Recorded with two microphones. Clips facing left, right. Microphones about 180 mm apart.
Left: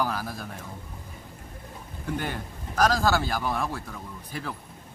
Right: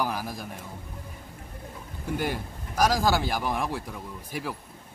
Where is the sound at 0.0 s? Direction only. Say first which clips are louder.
Left 1 dB; 15° right (ahead or behind).